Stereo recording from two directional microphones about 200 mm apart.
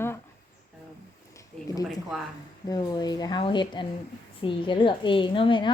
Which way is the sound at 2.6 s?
20° left (ahead or behind).